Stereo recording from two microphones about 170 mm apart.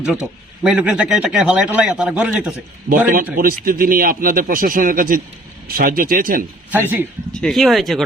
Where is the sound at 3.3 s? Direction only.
55° right (ahead or behind).